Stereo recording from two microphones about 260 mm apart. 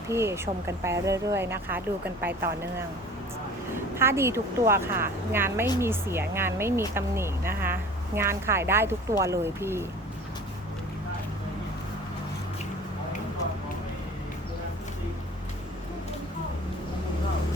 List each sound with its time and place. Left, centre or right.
0.1 s speech: centre
3.9 s speech: centre